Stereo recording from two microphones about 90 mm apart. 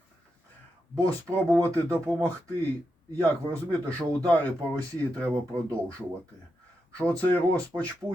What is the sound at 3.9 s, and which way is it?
Speech, 15° left (ahead or behind).